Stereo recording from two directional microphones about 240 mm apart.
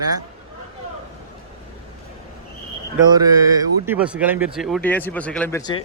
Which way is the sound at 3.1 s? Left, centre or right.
Centre.